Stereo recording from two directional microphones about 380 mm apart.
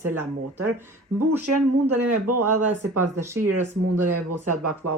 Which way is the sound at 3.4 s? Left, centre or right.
Right.